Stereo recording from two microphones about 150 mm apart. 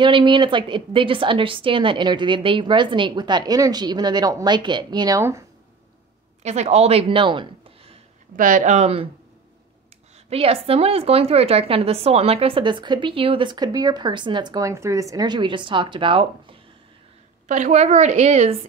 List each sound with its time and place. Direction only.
0.0 s a woman's voice: 30° right (ahead or behind)
6.4 s speech: 50° right (ahead or behind)
8.4 s a woman's voice: 60° right (ahead or behind)
10.3 s a woman's voice: 40° right (ahead or behind)
17.5 s a woman's voice: 50° right (ahead or behind)